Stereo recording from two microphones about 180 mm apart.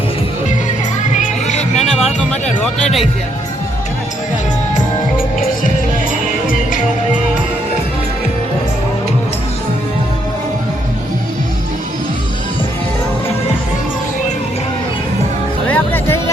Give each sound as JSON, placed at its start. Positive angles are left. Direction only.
{"t": 1.1, "sound": "music", "side_deg": 40}
{"t": 1.7, "sound": "music", "side_deg": 0}
{"t": 15.6, "sound": "music", "side_deg": 10}